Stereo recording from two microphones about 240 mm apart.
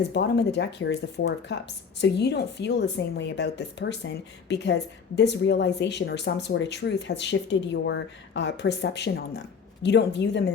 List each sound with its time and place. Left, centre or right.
0.1 s speech: left